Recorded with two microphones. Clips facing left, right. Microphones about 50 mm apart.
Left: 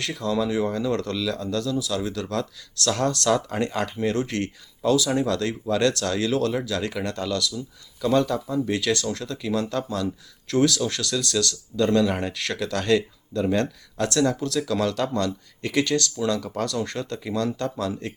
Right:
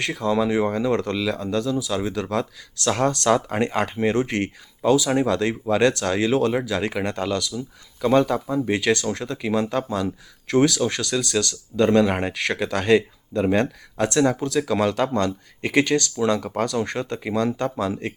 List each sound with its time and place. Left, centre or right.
0.0 s speech: right